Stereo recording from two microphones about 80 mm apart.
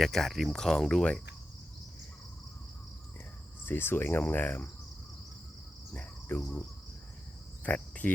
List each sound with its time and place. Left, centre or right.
0.0 s speech: centre
3.7 s speech: left
5.9 s cricket: centre
7.6 s cricket: centre